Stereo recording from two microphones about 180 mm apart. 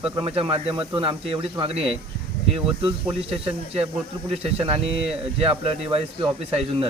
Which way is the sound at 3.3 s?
35° right (ahead or behind).